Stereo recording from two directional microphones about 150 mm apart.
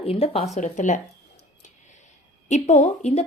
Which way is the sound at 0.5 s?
55° left (ahead or behind).